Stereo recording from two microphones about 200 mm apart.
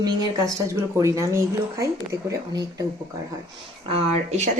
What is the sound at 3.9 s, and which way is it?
Speech, 35° right (ahead or behind).